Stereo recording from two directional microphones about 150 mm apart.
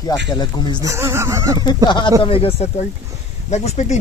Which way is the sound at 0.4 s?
30° left (ahead or behind).